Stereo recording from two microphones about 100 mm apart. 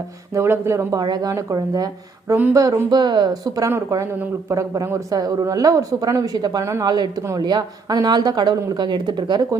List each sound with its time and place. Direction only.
0.3 s speech: 25° right (ahead or behind)
0.9 s speech: 45° right (ahead or behind)
2.3 s speech: 25° right (ahead or behind)
2.6 s speech: 35° right (ahead or behind)